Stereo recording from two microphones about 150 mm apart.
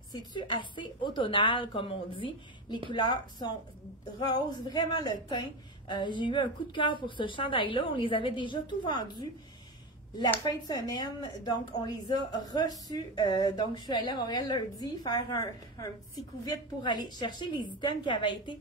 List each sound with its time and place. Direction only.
0.1 s a woman's voice: 30° left (ahead or behind)
10.4 s a woman's voice: 25° left (ahead or behind)